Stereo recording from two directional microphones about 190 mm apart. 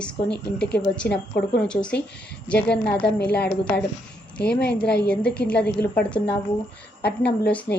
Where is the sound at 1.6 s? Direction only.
5° left (ahead or behind).